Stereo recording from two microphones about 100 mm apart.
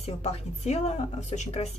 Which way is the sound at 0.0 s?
90° left.